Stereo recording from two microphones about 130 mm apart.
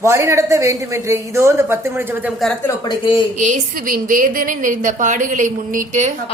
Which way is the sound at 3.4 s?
80° right.